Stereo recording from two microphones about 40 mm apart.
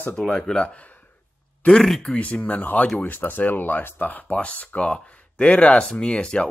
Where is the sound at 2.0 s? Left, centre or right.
Left.